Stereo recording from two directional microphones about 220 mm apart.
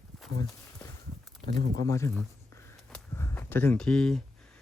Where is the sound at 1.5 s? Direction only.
50° right (ahead or behind).